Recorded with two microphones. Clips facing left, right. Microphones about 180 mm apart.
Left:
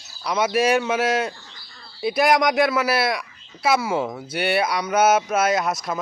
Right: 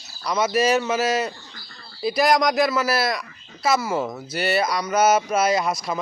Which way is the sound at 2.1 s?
5° left (ahead or behind).